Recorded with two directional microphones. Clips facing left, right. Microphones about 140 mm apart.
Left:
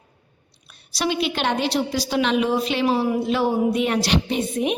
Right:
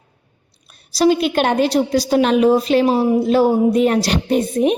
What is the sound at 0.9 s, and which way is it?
A woman's voice, 40° right (ahead or behind).